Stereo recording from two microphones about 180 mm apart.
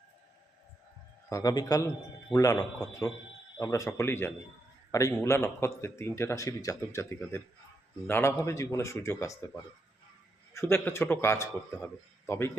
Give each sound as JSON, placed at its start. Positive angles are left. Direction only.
{"t": 1.3, "sound": "a man's voice", "side_deg": 20}
{"t": 10.5, "sound": "a man's voice", "side_deg": 15}